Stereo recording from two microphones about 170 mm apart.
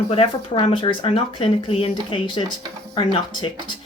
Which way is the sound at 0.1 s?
35° left (ahead or behind).